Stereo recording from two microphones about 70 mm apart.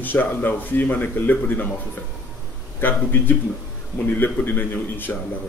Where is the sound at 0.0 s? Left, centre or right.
Left.